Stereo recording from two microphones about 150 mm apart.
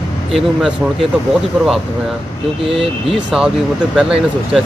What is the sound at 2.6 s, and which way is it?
Speech, 40° right (ahead or behind).